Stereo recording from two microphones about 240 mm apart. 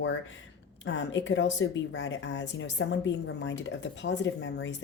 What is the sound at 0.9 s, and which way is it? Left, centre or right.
Speech, left.